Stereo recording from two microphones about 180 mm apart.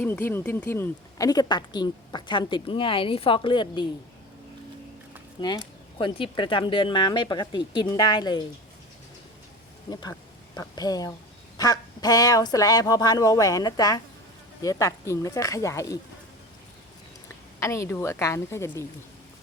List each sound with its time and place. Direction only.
0.0 s speech: 10° left (ahead or behind)
5.4 s speech: 25° left (ahead or behind)
9.9 s speech: 20° left (ahead or behind)
17.6 s speech: 15° left (ahead or behind)